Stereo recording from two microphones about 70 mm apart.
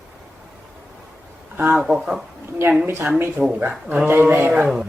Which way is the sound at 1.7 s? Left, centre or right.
Centre.